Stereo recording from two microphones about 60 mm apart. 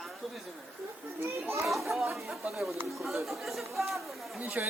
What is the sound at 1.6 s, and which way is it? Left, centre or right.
Speech, centre.